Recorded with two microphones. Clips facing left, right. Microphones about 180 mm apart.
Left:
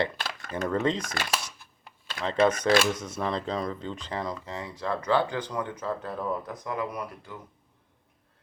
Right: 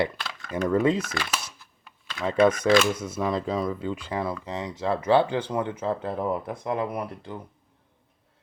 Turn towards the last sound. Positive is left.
turn(degrees=-30)  # may be behind; listen again after turning